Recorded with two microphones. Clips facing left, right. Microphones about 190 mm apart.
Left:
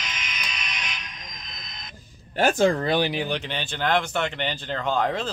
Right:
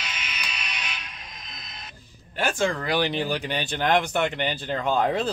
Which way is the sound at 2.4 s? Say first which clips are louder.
Left 5 dB; 40° left (ahead or behind).